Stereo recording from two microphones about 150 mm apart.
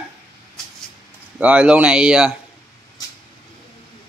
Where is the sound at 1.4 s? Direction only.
10° right (ahead or behind).